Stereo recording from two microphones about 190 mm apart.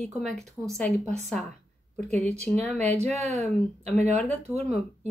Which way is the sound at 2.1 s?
5° left (ahead or behind).